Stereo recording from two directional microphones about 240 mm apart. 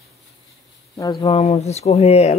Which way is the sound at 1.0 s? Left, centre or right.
Centre.